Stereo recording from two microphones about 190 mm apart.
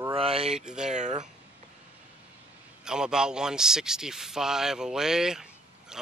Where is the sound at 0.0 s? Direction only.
30° right (ahead or behind).